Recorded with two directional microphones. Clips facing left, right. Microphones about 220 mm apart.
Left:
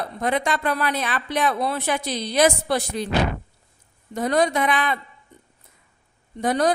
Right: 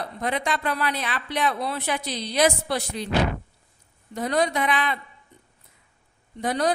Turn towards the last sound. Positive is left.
turn(degrees=45)  # may be behind; listen again after turning